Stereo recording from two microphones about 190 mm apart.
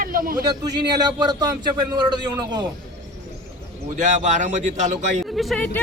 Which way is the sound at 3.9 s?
40° right (ahead or behind).